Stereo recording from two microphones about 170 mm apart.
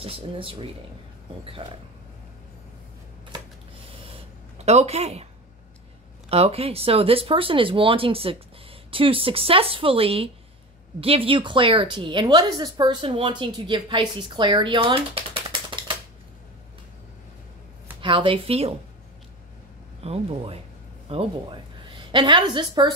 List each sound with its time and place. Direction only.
0.0 s speech: 35° right (ahead or behind)
4.6 s speech: 40° right (ahead or behind)
18.0 s speech: 30° right (ahead or behind)
20.0 s a woman's voice: 35° right (ahead or behind)